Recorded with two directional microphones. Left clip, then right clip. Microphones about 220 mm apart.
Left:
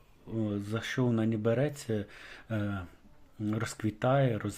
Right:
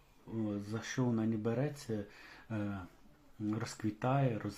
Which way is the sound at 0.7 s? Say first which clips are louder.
Left 6 dB; 45° left (ahead or behind).